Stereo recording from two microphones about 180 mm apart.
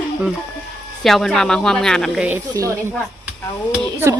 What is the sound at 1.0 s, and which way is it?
Speech, centre (ahead or behind).